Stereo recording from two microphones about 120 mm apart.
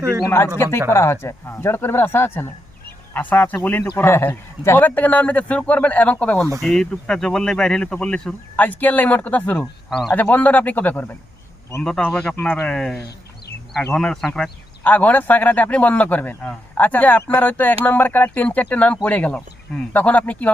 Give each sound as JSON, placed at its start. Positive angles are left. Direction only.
{"t": 0.3, "sound": "a man's voice", "side_deg": 20}
{"t": 14.8, "sound": "a man's voice", "side_deg": 15}